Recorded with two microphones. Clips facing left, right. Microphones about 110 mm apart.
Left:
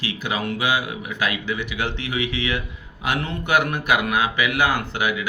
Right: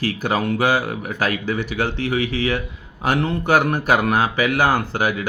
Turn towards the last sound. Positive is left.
turn(degrees=-40)  # may be behind; listen again after turning